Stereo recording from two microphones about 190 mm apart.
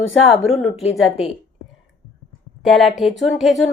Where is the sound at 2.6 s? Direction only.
Centre (ahead or behind).